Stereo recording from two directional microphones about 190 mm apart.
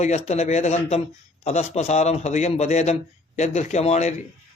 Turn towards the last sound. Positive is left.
turn(degrees=35)  # may be behind; listen again after turning